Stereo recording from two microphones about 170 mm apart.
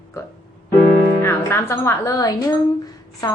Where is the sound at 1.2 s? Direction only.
15° left (ahead or behind).